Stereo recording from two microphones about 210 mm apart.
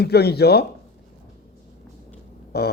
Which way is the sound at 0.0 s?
50° left (ahead or behind).